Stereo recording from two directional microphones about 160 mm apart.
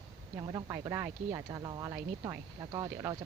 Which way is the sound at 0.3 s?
25° right (ahead or behind).